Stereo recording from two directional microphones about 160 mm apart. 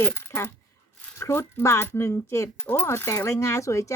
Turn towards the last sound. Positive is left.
turn(degrees=20)  # may be behind; listen again after turning